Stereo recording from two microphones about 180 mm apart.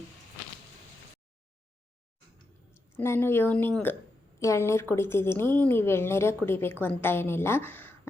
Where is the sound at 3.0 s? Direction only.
15° left (ahead or behind).